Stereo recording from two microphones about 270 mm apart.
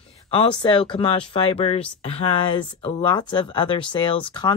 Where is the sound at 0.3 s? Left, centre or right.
Centre.